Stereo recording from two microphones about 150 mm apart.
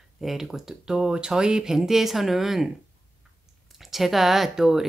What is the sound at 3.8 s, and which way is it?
Speech, centre (ahead or behind).